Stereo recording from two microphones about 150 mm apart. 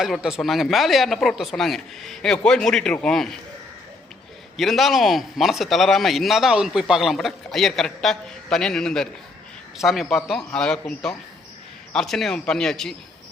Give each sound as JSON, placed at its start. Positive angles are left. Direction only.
{"t": 0.0, "sound": "a man's voice", "side_deg": -5}
{"t": 4.5, "sound": "a man's voice", "side_deg": 0}